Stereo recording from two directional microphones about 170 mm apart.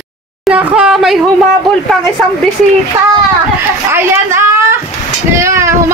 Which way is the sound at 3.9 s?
15° right (ahead or behind).